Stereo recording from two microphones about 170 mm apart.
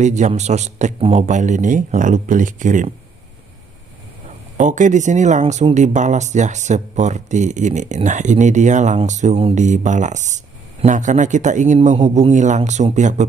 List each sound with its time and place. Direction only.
0.0 s speech: 45° right (ahead or behind)
4.6 s speech: 45° right (ahead or behind)